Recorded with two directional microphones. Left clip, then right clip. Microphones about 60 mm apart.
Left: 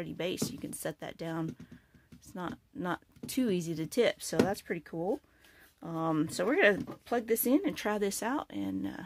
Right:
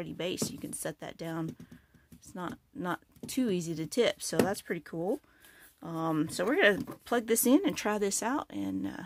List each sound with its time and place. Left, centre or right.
0.0 s speech: centre
4.5 s speech: right
5.8 s speech: centre
7.2 s speech: right
7.6 s speech: right
7.9 s speech: right